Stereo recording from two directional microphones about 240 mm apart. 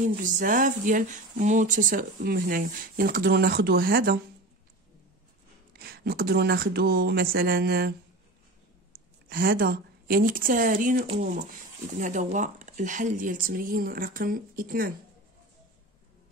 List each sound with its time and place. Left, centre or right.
0.0 s speech: right
5.8 s speech: right
9.3 s speech: right